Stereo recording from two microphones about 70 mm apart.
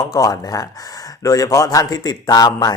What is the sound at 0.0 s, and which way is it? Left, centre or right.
A man's voice, left.